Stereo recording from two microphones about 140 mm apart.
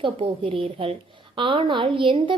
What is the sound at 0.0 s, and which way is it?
A woman's voice, 40° right (ahead or behind).